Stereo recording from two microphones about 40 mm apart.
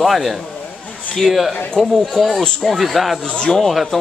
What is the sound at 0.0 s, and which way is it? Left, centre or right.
Speech, centre.